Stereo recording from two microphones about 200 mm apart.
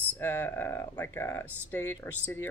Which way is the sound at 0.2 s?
10° left (ahead or behind).